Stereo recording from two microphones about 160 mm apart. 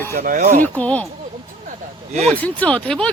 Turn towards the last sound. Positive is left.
turn(degrees=5)  # may be behind; listen again after turning